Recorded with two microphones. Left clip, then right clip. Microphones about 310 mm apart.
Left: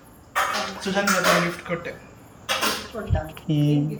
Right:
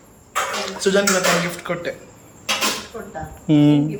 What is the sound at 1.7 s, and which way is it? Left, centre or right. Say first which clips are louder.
Speech: right 3 dB; centre.